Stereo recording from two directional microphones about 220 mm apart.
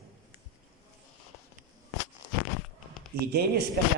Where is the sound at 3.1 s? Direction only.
45° right (ahead or behind).